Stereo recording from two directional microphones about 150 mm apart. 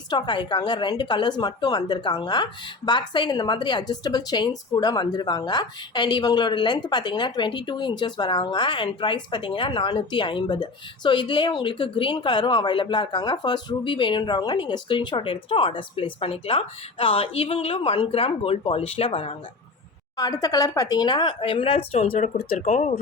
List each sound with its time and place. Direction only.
0.1 s a woman's voice: 30° left (ahead or behind)
20.1 s speech: 25° left (ahead or behind)
22.0 s speech: 75° left (ahead or behind)
22.6 s speech: 45° left (ahead or behind)